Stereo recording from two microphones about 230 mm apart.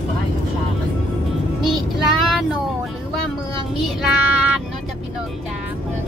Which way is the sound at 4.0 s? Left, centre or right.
Centre.